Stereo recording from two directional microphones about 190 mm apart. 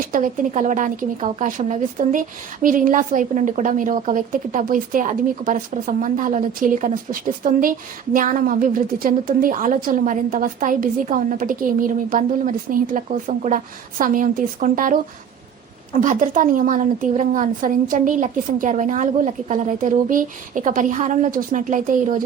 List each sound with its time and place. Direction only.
0.1 s speech: 45° right (ahead or behind)
16.0 s speech: 45° right (ahead or behind)